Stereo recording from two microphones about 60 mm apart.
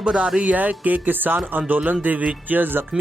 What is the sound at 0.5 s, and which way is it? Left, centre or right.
Speech, right.